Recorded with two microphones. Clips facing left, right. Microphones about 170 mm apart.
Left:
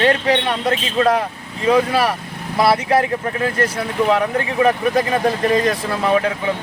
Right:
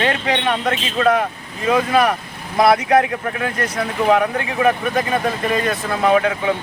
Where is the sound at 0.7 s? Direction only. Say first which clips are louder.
Left 2 dB; 30° left (ahead or behind).